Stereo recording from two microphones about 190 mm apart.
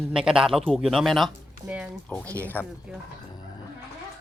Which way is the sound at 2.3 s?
10° left (ahead or behind).